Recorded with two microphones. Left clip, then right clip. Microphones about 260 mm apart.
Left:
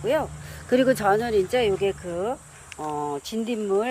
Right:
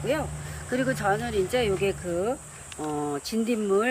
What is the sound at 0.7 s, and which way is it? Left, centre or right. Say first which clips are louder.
Speech: left 6 dB; left.